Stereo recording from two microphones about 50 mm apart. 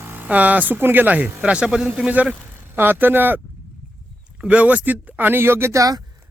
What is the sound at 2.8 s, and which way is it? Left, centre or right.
Speech, right.